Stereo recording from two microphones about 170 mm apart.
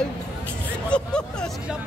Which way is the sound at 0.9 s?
5° left (ahead or behind).